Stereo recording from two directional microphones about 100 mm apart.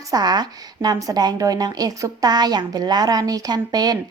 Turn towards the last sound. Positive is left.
turn(degrees=-40)  # may be behind; listen again after turning